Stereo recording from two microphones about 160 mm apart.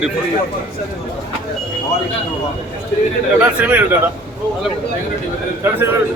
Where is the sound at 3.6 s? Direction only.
10° right (ahead or behind).